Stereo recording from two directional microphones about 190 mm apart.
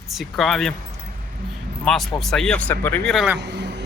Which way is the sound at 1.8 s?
Centre (ahead or behind).